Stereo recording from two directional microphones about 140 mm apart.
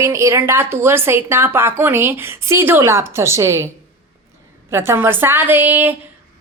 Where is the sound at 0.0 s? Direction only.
20° right (ahead or behind).